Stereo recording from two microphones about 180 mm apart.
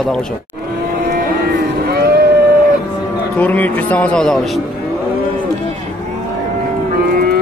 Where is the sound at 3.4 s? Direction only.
10° left (ahead or behind).